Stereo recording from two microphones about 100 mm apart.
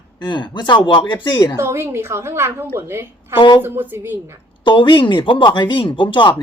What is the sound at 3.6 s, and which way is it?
Speech, 20° right (ahead or behind).